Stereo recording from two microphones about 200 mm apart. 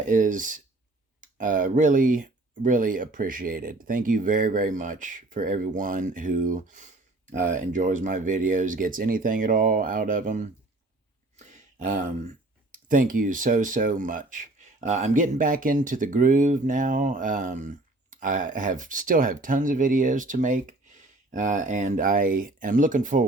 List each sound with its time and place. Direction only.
0.1 s speech: 40° right (ahead or behind)
11.3 s a sound: 40° right (ahead or behind)
12.7 s speech: 45° right (ahead or behind)